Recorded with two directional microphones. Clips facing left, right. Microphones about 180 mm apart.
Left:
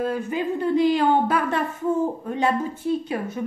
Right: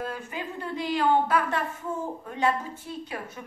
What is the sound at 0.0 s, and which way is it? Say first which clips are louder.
A woman's voice: left 9 dB; 25° left (ahead or behind).